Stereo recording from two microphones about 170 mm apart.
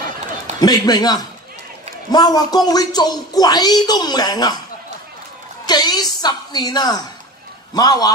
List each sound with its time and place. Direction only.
0.6 s speech: 20° left (ahead or behind)
5.7 s speech: 25° left (ahead or behind)